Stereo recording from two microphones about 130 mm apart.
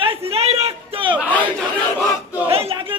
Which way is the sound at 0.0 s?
50° right (ahead or behind).